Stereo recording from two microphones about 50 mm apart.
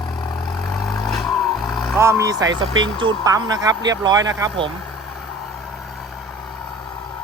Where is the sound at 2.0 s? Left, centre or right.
Right.